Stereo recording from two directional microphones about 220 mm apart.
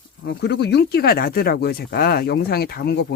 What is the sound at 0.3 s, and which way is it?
Speech, 50° left (ahead or behind).